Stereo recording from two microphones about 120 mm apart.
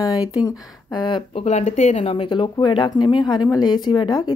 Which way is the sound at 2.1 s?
45° left (ahead or behind).